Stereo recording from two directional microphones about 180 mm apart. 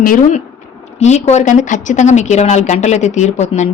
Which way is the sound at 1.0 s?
40° left (ahead or behind).